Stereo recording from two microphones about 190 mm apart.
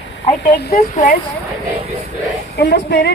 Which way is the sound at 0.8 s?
40° left (ahead or behind).